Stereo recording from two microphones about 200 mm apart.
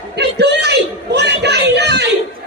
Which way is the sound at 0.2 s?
55° right (ahead or behind).